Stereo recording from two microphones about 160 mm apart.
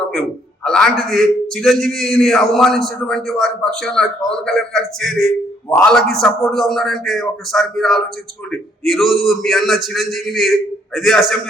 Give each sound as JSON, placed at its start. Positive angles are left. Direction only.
{"t": 0.1, "sound": "a man's voice", "side_deg": 5}